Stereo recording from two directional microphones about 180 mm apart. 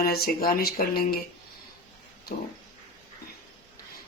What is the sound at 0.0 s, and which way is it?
Speech, 55° left (ahead or behind).